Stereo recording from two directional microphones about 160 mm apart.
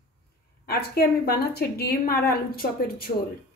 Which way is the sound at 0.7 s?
75° left (ahead or behind).